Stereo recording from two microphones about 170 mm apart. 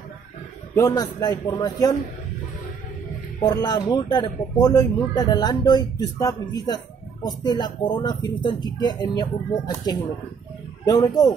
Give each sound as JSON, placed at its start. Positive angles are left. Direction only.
{"t": 0.7, "sound": "speech", "side_deg": 20}
{"t": 3.3, "sound": "speech", "side_deg": 25}